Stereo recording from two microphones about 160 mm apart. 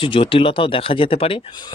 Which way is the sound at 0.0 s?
35° left (ahead or behind).